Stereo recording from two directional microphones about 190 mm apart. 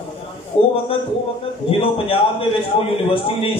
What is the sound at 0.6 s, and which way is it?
A man's voice, 30° left (ahead or behind).